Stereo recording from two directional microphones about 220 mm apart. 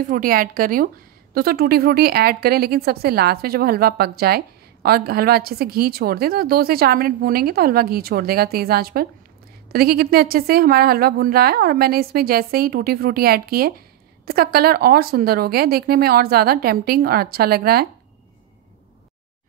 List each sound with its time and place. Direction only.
0.0 s a woman's voice: 40° right (ahead or behind)